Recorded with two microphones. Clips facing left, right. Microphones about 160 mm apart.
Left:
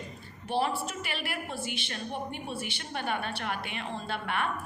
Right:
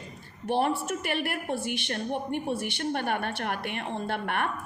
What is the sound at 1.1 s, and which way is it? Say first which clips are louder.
A woman's voice: right 8 dB; 55° right (ahead or behind).